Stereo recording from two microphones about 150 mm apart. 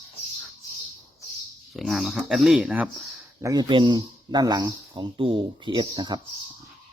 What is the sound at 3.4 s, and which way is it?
Speech, 30° right (ahead or behind).